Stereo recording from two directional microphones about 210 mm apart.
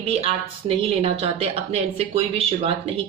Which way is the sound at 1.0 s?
30° right (ahead or behind).